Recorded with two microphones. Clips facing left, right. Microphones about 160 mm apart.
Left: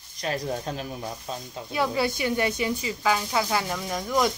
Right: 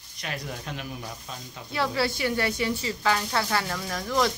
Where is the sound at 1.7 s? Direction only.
20° left (ahead or behind).